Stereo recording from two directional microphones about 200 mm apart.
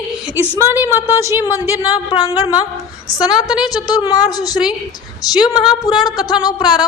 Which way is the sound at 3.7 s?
20° left (ahead or behind).